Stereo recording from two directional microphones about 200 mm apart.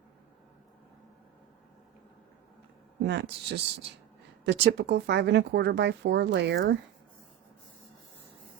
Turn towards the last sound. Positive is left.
turn(degrees=-60)  # may be behind; listen again after turning